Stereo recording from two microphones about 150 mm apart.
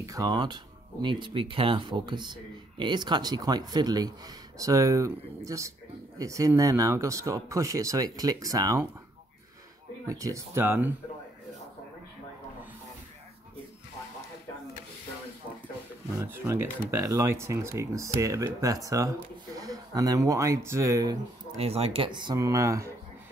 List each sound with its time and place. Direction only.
0.0 s speech: 25° right (ahead or behind)
10.0 s speech: 20° right (ahead or behind)
16.2 s speech: 20° right (ahead or behind)
21.5 s speech: 40° right (ahead or behind); by 22.9 s 20° right (ahead or behind)